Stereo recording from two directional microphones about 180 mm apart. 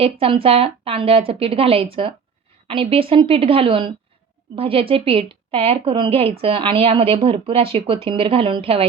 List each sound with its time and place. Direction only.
0.0 s speech: 30° right (ahead or behind)